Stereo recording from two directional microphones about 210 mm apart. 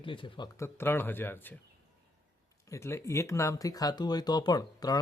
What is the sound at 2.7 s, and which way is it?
Speech, 15° left (ahead or behind).